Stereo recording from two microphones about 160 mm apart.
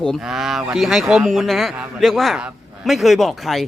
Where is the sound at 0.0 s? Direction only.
Centre (ahead or behind).